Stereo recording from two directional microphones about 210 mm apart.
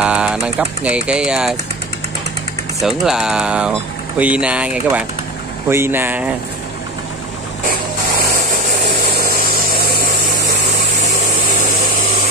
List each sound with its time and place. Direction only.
0.0 s speech: 5° right (ahead or behind)
2.8 s speech: centre (ahead or behind)
9.2 s power tool: 45° right (ahead or behind)